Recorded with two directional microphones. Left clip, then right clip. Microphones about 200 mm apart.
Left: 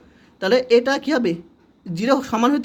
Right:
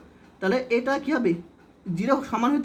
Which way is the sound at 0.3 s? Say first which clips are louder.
Left 8 dB; 40° left (ahead or behind).